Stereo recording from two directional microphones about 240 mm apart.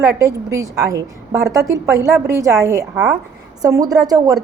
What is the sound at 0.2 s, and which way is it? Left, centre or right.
A woman's voice, centre.